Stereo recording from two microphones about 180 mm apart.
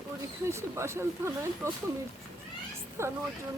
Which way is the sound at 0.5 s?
15° right (ahead or behind).